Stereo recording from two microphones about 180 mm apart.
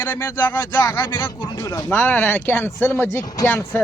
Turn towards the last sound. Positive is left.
turn(degrees=10)  # may be behind; listen again after turning